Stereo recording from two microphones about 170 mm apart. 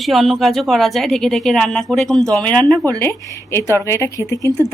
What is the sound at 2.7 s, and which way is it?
Speech, 20° right (ahead or behind).